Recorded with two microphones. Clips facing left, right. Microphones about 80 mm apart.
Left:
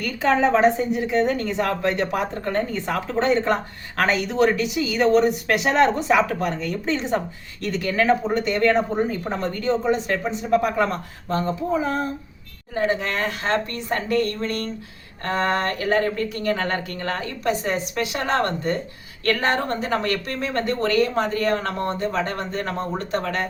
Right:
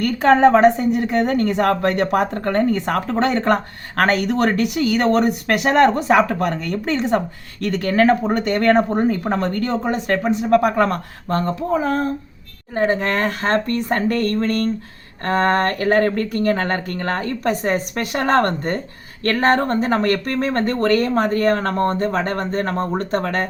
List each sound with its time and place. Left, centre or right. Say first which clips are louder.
0.0 s a woman's voice: right 7 dB; right